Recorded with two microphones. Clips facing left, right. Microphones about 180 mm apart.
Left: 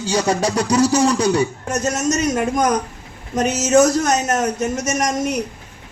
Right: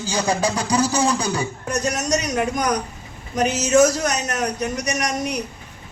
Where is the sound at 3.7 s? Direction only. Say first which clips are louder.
Left 3 dB; 45° left (ahead or behind).